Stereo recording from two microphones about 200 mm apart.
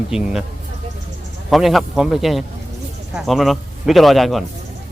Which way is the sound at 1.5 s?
Centre (ahead or behind).